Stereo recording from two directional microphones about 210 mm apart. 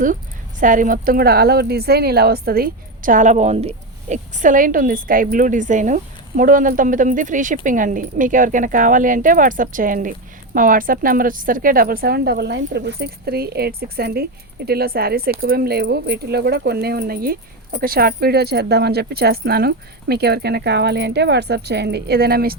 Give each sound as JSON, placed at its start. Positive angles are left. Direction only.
{"t": 0.6, "sound": "speech", "side_deg": -40}